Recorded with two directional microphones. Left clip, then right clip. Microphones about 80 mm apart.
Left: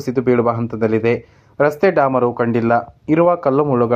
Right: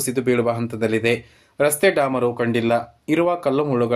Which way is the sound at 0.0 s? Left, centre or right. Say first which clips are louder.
Left 4 dB; left.